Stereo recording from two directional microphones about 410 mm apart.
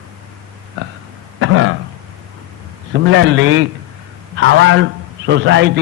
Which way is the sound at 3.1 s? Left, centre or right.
Right.